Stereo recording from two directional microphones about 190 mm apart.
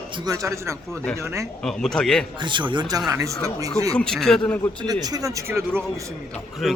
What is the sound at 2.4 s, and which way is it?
Speech, 25° right (ahead or behind).